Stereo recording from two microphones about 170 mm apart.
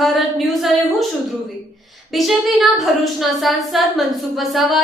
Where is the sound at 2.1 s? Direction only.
Centre (ahead or behind).